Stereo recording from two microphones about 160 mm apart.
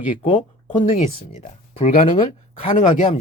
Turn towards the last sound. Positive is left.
turn(degrees=40)  # may be behind; listen again after turning